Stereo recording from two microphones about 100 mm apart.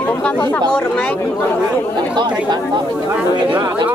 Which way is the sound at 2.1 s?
50° right (ahead or behind).